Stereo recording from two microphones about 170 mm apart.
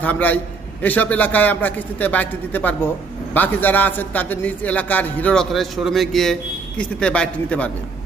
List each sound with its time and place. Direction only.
0.0 s a man's voice: 10° left (ahead or behind)